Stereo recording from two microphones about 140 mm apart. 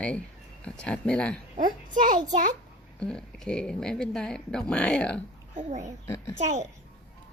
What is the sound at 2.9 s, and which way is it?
Speech, 5° left (ahead or behind).